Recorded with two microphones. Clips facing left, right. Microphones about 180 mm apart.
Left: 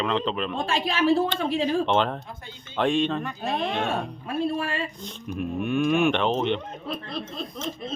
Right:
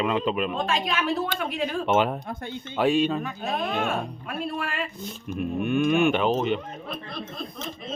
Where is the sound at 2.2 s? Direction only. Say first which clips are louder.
Right 8 dB; 60° right (ahead or behind).